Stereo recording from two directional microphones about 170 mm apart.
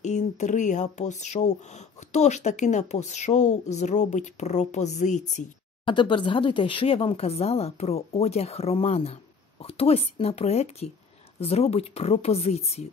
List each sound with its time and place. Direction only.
0.0 s speech: 45° left (ahead or behind)
5.9 s speech: 30° left (ahead or behind)